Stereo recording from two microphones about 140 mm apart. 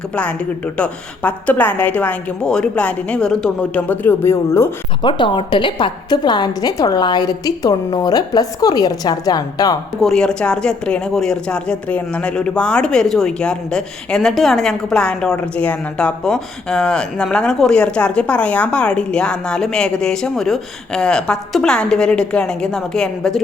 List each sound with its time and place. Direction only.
0.2 s a woman's voice: 10° left (ahead or behind)
5.0 s a woman's voice: 35° left (ahead or behind)
10.0 s a woman's voice: 5° left (ahead or behind)